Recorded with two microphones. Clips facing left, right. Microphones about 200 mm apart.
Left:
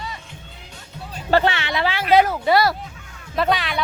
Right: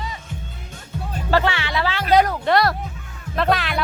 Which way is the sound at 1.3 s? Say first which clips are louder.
Left 2 dB; 20° left (ahead or behind).